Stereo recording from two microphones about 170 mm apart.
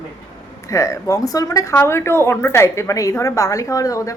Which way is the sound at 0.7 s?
20° left (ahead or behind).